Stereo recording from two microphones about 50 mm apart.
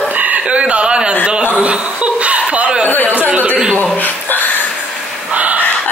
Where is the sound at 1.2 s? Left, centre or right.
Centre.